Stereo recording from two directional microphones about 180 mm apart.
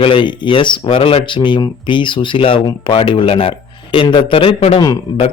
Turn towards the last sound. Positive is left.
turn(degrees=20)  # may be behind; listen again after turning